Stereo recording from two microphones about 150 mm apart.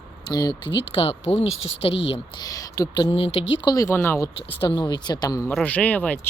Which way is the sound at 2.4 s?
25° left (ahead or behind).